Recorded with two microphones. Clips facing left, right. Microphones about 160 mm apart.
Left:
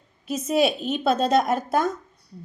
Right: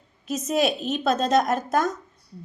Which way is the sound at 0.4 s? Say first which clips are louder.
Left 2 dB; 5° left (ahead or behind).